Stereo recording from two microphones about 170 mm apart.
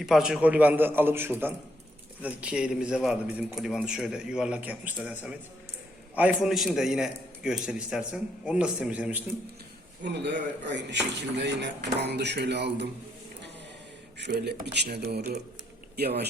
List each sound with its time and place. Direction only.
0.0 s a man's voice: 5° right (ahead or behind)
10.0 s a man's voice: 90° right
14.2 s speech: 75° right (ahead or behind); by 15.4 s 55° right (ahead or behind)
16.0 s speech: 70° right (ahead or behind)